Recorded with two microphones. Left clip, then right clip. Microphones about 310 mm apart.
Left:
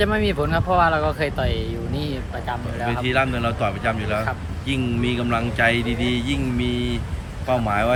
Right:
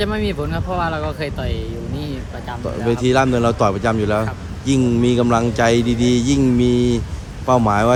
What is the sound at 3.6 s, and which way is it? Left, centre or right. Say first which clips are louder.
Speech: right 6 dB; left.